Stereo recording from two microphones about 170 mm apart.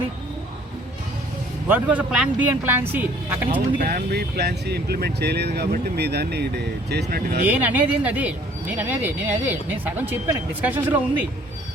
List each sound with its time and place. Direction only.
1.6 s speech: 10° right (ahead or behind)
3.8 s speech: 55° right (ahead or behind)
7.4 s speech: 10° right (ahead or behind)